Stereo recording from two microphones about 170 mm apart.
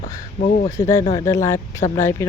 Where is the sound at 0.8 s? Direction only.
15° left (ahead or behind).